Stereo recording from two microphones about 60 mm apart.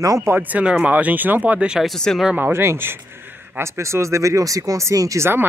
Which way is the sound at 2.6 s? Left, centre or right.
Right.